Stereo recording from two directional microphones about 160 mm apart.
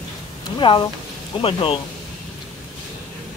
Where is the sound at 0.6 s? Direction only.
30° left (ahead or behind).